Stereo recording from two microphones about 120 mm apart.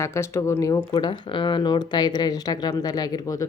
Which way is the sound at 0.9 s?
40° left (ahead or behind).